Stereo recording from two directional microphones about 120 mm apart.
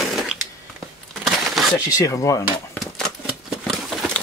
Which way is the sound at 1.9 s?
25° left (ahead or behind).